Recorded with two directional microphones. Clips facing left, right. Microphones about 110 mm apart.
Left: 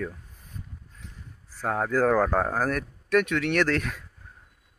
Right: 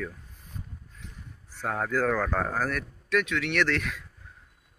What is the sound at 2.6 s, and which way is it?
Speech, 45° left (ahead or behind).